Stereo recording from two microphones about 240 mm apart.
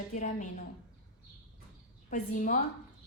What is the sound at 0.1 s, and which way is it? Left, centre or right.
Speech, left.